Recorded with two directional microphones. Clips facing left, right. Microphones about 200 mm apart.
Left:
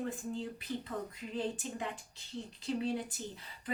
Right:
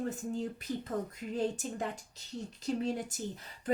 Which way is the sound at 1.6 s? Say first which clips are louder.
Right 3 dB; 45° right (ahead or behind).